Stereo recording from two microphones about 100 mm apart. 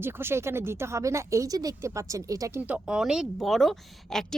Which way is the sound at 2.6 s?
10° right (ahead or behind).